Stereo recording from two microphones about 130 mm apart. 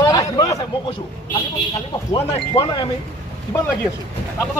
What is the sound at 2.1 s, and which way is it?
Speech, 40° left (ahead or behind).